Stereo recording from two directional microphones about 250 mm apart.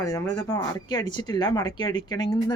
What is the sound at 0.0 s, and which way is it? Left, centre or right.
Speech, centre.